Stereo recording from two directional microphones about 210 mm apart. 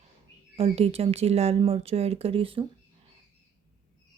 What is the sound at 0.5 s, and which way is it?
Speech, 30° right (ahead or behind).